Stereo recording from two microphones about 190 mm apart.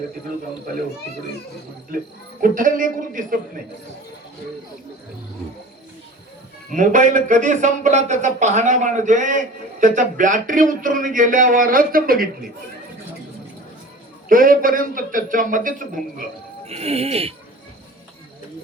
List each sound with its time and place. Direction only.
2.4 s speech: 45° right (ahead or behind)
6.7 s speech: 40° right (ahead or behind)
14.3 s speech: 50° right (ahead or behind)
16.6 s speech: 30° right (ahead or behind)